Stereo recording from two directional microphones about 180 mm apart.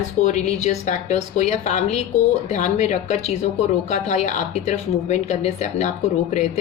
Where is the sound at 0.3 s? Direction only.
40° left (ahead or behind).